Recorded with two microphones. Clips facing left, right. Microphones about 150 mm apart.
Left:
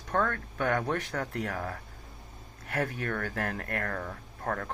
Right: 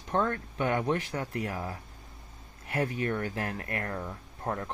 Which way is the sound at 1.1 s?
5° right (ahead or behind).